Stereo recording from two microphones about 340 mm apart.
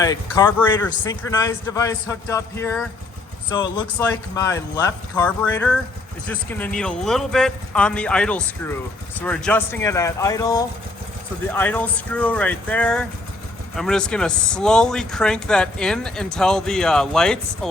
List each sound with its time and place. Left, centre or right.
0.0 s a man's voice: centre